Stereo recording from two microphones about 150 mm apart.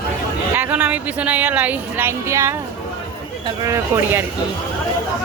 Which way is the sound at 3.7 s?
15° right (ahead or behind).